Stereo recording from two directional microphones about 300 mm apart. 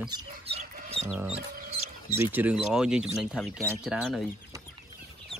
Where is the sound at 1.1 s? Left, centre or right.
Centre.